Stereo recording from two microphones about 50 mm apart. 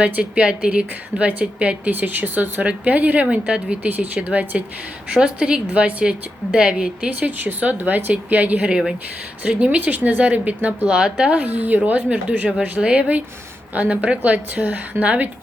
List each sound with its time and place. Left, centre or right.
0.0 s speech: right
3.2 s speech: right
3.8 s speech: right
5.1 s speech: centre
7.1 s speech: right